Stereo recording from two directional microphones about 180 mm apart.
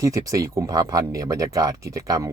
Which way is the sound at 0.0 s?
20° right (ahead or behind).